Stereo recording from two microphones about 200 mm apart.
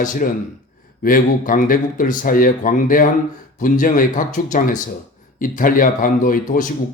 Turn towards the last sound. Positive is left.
turn(degrees=45)  # may be behind; listen again after turning